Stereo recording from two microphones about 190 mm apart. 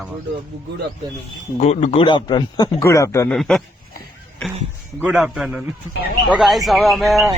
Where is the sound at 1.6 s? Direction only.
35° left (ahead or behind); by 3.3 s 15° left (ahead or behind).